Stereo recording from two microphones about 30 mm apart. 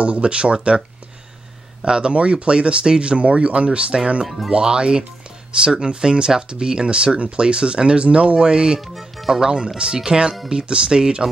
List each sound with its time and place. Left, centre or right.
0.0 s speech: right
1.9 s speech: right
8.8 s speech: centre
9.9 s speech: right